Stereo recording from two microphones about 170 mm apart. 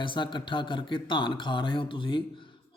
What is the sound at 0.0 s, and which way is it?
A man's voice, 30° left (ahead or behind).